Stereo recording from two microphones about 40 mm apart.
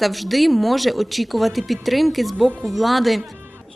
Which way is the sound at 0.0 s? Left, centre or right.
Centre.